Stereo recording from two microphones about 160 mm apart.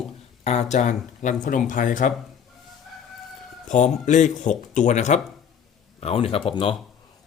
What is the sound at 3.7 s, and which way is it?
Speech, 50° left (ahead or behind).